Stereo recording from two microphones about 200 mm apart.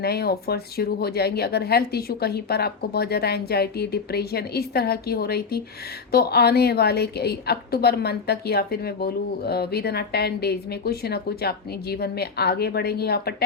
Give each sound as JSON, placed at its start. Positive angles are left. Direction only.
{"t": 0.0, "sound": "a woman's voice", "side_deg": 50}